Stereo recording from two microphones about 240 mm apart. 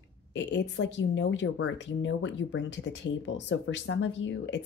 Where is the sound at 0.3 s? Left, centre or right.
Left.